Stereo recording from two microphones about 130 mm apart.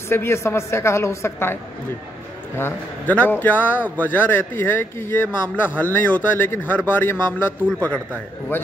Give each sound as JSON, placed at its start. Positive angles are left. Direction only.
{"t": 0.1, "sound": "a woman's voice", "side_deg": 20}